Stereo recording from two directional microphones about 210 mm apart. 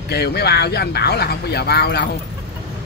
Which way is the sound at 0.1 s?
50° left (ahead or behind).